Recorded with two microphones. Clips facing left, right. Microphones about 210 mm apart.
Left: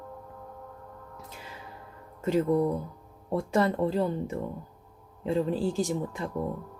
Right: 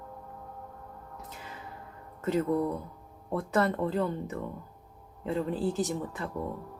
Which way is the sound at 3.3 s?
10° left (ahead or behind).